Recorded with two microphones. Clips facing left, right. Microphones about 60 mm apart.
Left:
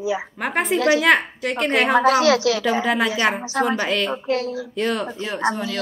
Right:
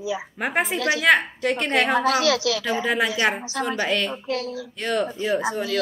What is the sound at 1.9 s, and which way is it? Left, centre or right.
Speech, left.